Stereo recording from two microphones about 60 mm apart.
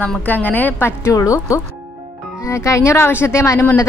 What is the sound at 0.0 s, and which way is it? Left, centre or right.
Speech, left.